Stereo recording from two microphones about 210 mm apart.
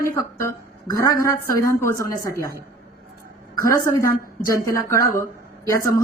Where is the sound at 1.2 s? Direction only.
15° left (ahead or behind).